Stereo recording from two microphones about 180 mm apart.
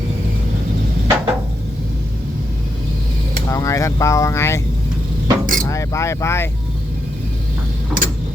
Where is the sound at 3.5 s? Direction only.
15° left (ahead or behind).